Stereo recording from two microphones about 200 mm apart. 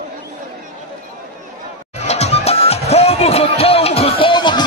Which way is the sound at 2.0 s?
35° left (ahead or behind).